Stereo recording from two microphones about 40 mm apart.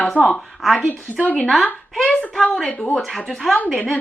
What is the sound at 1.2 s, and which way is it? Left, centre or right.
Speech, left.